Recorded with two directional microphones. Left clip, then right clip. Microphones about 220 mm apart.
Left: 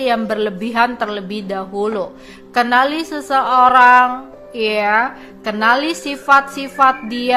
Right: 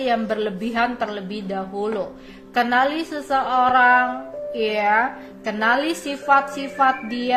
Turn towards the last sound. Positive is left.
turn(degrees=25)  # may be behind; listen again after turning